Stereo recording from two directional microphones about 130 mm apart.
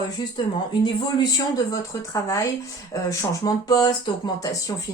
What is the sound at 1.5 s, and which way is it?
Speech, 25° left (ahead or behind).